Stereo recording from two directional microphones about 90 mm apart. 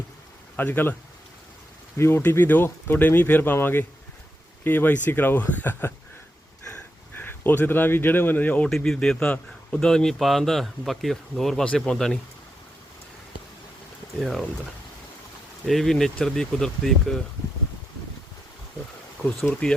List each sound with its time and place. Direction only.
0.5 s speech: 20° left (ahead or behind)
2.0 s speech: 25° left (ahead or behind)
7.2 s speech: 25° left (ahead or behind)
8.7 s speech: 5° left (ahead or behind)
14.2 s speech: centre (ahead or behind)
15.6 s speech: centre (ahead or behind)
19.5 s speech: 15° left (ahead or behind)